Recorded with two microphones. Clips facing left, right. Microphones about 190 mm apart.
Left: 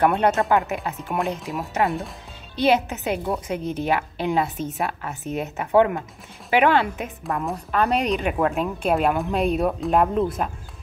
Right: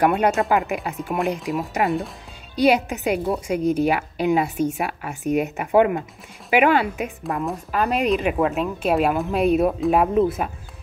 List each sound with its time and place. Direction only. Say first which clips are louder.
0.0 s a woman's voice: right 1 dB; 10° right (ahead or behind)
2.5 s a woman's voice: right 2 dB; 10° right (ahead or behind)